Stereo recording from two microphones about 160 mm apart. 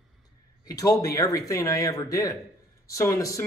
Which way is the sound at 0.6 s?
20° left (ahead or behind).